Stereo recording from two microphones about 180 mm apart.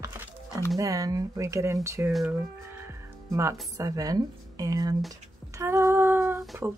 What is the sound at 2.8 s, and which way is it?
Music, 15° right (ahead or behind).